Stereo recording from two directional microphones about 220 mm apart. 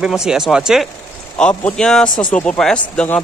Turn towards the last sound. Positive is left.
turn(degrees=5)  # may be behind; listen again after turning